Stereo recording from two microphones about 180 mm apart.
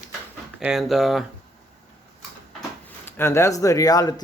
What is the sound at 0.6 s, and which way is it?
Speech, 5° right (ahead or behind).